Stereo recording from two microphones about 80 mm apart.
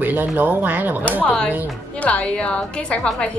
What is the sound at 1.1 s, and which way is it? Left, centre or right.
A woman's voice, centre.